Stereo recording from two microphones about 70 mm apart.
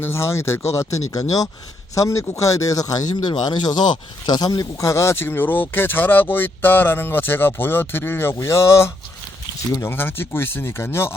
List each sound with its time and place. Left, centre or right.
0.0 s speech: left
2.0 s speech: left
4.8 s speech: left